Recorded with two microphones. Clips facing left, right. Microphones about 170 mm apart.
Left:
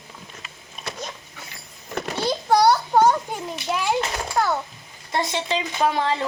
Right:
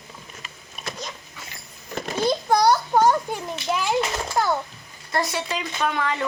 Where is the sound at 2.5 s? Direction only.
10° left (ahead or behind).